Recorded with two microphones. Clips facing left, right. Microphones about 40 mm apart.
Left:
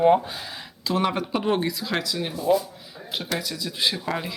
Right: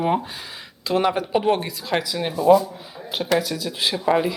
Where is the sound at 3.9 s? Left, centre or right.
Centre.